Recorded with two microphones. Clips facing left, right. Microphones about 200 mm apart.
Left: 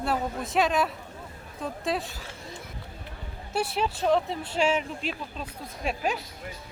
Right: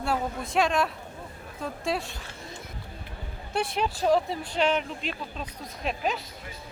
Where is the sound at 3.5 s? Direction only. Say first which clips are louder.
Even; 5° left (ahead or behind).